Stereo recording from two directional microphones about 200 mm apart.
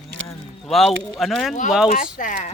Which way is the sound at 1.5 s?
40° left (ahead or behind).